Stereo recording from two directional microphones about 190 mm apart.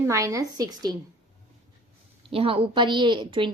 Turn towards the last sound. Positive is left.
turn(degrees=-25)  # may be behind; listen again after turning